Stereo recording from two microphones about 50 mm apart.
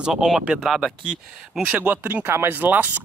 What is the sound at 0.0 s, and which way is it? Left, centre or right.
Speech, centre.